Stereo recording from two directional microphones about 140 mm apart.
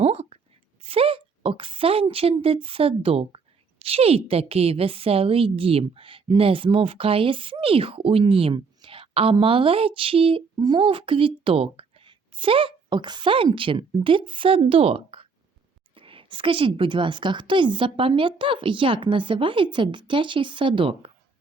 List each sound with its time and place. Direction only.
0.0 s whispering: 50° right (ahead or behind)
0.9 s a woman's voice: 40° right (ahead or behind)